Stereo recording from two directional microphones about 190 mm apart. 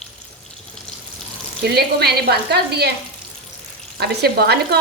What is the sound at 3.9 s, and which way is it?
Speech, 55° right (ahead or behind).